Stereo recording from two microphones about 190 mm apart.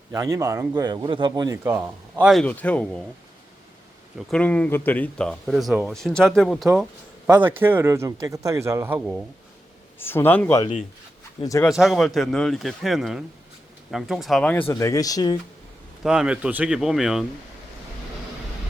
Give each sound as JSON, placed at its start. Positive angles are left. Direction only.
{"t": 0.1, "sound": "speech", "side_deg": -15}
{"t": 2.2, "sound": "speech", "side_deg": 0}
{"t": 4.3, "sound": "a man's voice", "side_deg": 5}
{"t": 7.3, "sound": "a man's voice", "side_deg": -10}
{"t": 10.0, "sound": "a man's voice", "side_deg": 10}
{"t": 11.7, "sound": "speech", "side_deg": 0}
{"t": 14.6, "sound": "speech", "side_deg": 15}
{"t": 16.0, "sound": "speech", "side_deg": -5}